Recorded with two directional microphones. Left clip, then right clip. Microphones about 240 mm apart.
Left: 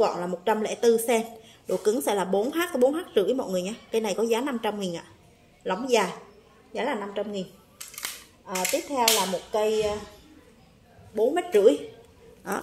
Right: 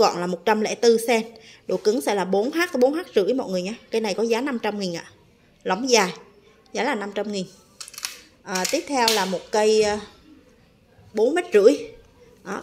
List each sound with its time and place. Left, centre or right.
0.0 s a woman's voice: right
8.5 s a sound: right
11.1 s a woman's voice: right